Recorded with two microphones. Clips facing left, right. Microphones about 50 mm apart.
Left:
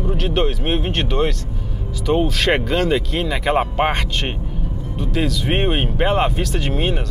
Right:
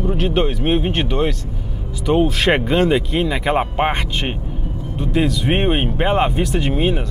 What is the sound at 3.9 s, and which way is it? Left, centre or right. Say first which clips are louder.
Speech: right 1 dB; centre.